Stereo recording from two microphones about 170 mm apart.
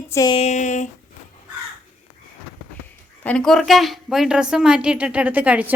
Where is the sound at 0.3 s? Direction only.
40° left (ahead or behind).